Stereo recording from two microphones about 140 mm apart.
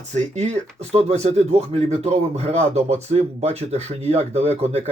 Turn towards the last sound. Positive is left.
turn(degrees=-50)  # may be behind; listen again after turning